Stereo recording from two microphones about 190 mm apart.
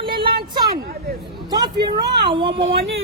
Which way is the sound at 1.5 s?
20° right (ahead or behind).